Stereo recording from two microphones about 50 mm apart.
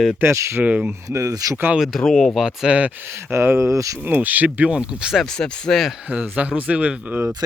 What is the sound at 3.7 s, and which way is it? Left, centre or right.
Speech, right.